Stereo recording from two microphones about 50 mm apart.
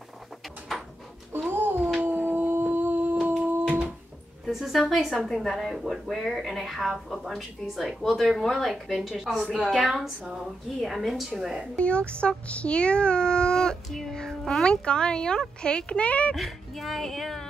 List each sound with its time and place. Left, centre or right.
1.5 s cat: right
2.0 s a sound: right
4.5 s a woman's voice: centre
11.8 s a child's voice: left
13.8 s child singing: centre
14.7 s a child's voice: centre
16.3 s speech: centre